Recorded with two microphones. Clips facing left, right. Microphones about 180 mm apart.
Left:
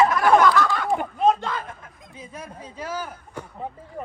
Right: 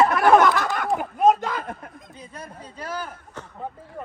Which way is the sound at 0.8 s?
5° right (ahead or behind).